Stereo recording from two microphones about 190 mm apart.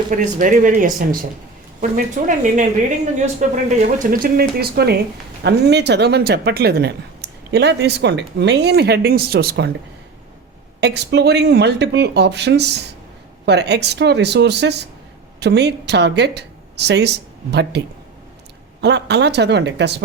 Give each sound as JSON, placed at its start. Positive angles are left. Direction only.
{"t": 0.1, "sound": "speech", "side_deg": -45}
{"t": 10.8, "sound": "speech", "side_deg": -60}